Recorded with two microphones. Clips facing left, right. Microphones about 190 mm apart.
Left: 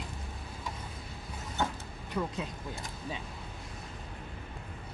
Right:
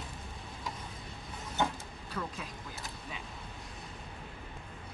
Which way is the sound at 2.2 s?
15° left (ahead or behind).